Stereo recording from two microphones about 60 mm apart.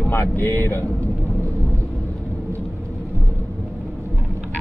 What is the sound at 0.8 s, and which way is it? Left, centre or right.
Vehicle, left.